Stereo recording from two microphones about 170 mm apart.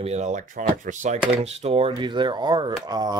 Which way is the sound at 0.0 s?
40° right (ahead or behind).